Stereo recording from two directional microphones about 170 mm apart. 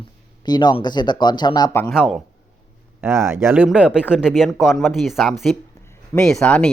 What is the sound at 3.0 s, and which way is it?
Speech, 15° right (ahead or behind).